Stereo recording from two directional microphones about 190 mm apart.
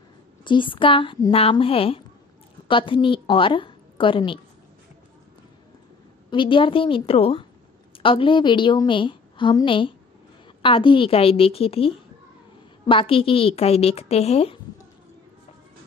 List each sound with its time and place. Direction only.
0.4 s a woman's voice: 25° left (ahead or behind)
6.3 s a woman's voice: 25° left (ahead or behind)